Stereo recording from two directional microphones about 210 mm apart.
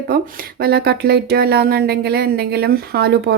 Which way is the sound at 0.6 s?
50° right (ahead or behind).